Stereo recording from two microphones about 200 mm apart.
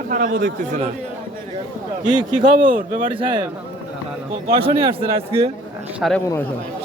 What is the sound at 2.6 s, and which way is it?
Speech, 40° right (ahead or behind).